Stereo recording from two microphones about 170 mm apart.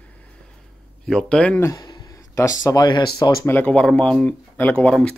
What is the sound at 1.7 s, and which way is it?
Speech, 25° left (ahead or behind).